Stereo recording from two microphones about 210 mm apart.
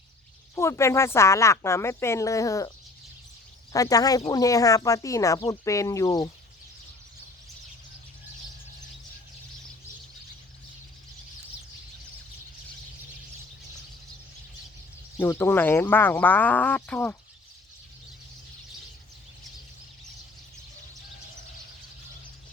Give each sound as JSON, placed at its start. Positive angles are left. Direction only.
{"t": 0.5, "sound": "speech", "side_deg": 15}
{"t": 15.2, "sound": "speech", "side_deg": 10}